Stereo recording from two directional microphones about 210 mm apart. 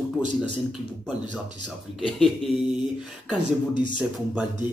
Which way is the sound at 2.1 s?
Centre (ahead or behind).